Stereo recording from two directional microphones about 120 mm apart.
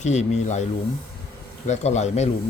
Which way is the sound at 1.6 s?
70° left (ahead or behind).